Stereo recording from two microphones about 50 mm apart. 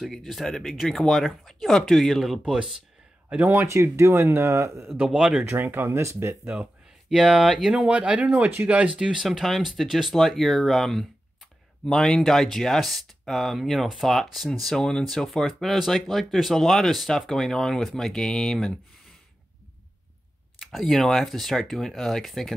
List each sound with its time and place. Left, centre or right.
0.1 s speech: centre
3.6 s speech: right
5.0 s speech: centre
5.4 s speech: right
5.9 s speech: right
7.1 s speech: centre
7.8 s speech: right
8.9 s speech: centre
14.8 s speech: centre
20.5 s speech: centre